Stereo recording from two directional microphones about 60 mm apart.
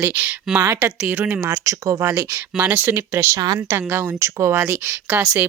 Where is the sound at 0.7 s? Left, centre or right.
Right.